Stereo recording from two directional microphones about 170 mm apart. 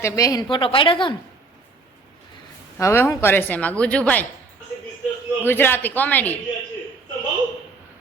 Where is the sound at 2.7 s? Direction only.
15° left (ahead or behind).